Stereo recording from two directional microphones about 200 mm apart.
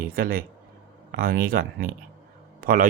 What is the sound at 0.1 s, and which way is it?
Speech, 45° right (ahead or behind).